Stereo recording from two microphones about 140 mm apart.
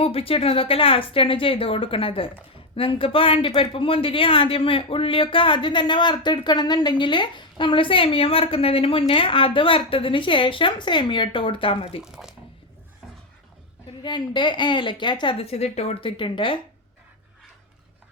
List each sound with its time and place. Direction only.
0.0 s speech: 45° left (ahead or behind)
12.0 s speech: 5° right (ahead or behind)
14.0 s speech: 35° left (ahead or behind)